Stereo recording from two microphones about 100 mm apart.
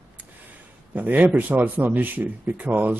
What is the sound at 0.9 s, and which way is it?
A man's voice, 15° right (ahead or behind).